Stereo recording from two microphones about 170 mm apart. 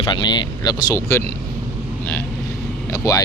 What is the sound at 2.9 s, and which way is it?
Speech, 20° left (ahead or behind).